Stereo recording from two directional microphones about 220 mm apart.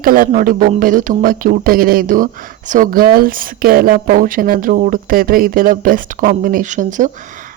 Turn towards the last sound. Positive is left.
turn(degrees=-35)  # may be behind; listen again after turning